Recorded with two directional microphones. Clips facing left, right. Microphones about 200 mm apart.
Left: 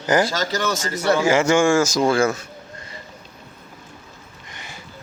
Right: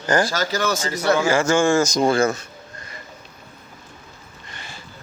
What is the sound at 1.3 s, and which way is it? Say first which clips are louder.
Speech: left 3 dB; 20° left (ahead or behind).